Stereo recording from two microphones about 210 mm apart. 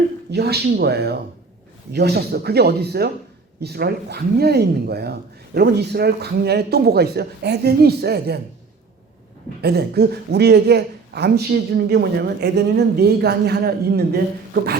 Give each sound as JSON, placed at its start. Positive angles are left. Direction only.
{"t": 0.3, "sound": "speech", "side_deg": -50}
{"t": 9.6, "sound": "speech", "side_deg": -50}